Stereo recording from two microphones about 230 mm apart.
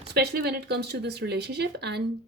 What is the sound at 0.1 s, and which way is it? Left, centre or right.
A woman's voice, right.